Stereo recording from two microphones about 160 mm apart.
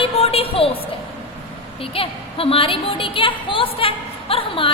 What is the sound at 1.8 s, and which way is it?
A woman's voice, 35° left (ahead or behind).